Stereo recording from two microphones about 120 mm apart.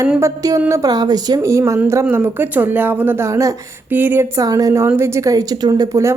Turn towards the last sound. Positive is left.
turn(degrees=-30)  # may be behind; listen again after turning